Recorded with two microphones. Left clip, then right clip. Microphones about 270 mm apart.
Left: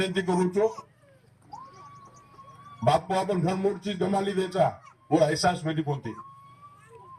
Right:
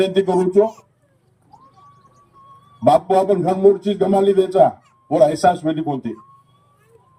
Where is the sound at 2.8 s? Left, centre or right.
Right.